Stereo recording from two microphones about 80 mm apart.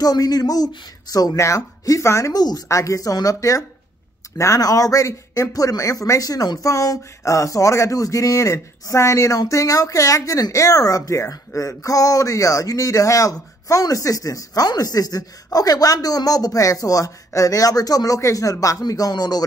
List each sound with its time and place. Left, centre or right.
0.0 s speech: left
2.3 s speech: left